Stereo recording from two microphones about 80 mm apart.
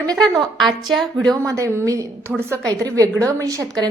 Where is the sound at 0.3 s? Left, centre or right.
Centre.